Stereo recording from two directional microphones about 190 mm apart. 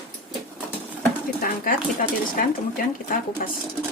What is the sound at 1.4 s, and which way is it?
Speech, 45° left (ahead or behind).